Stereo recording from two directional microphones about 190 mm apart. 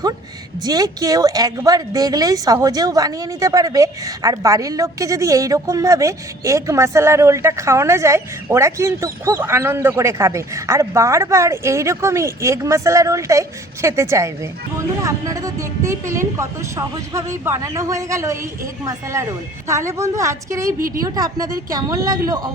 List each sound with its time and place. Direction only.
0.6 s speech: 20° right (ahead or behind)